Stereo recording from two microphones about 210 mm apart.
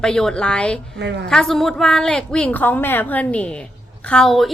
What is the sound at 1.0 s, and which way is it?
Speech, 55° right (ahead or behind).